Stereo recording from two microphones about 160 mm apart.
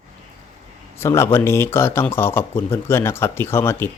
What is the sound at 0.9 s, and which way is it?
Speech, 15° left (ahead or behind).